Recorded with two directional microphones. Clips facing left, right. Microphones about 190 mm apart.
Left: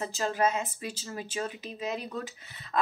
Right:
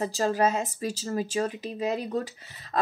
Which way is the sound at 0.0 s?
35° right (ahead or behind).